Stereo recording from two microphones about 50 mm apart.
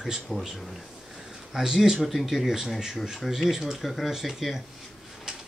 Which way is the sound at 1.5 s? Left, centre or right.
Centre.